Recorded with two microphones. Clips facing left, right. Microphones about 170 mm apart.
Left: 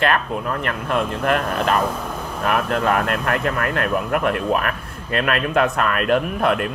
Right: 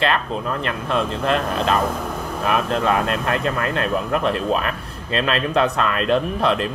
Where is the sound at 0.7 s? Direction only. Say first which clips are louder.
Even; 20° right (ahead or behind).